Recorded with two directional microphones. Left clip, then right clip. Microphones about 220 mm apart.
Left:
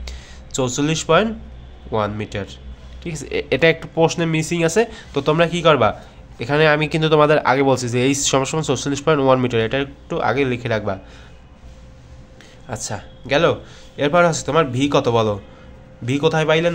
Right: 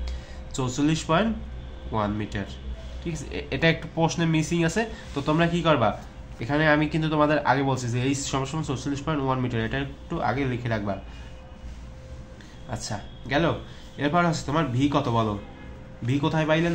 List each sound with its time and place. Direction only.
0.0 s a sound: 40° left (ahead or behind)
1.9 s speech: 35° left (ahead or behind)
12.6 s speech: 40° left (ahead or behind)